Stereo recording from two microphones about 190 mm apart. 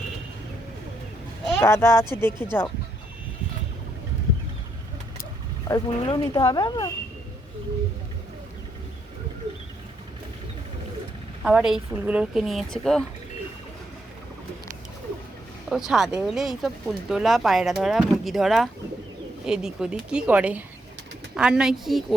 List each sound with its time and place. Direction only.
1.5 s speech: 15° left (ahead or behind)
5.6 s speech: 20° left (ahead or behind)
11.4 s speech: 5° right (ahead or behind)
15.7 s speech: centre (ahead or behind)